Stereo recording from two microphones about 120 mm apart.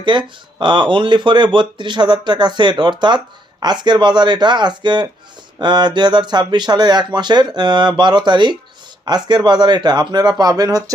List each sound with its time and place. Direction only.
0.0 s speech: 40° right (ahead or behind)